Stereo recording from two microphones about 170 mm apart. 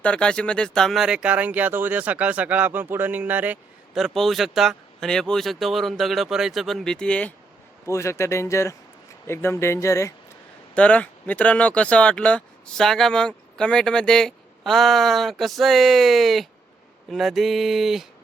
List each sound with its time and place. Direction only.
0.0 s speech: 5° left (ahead or behind)